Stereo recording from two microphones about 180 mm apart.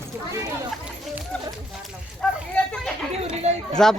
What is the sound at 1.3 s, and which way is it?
Speech, 5° left (ahead or behind).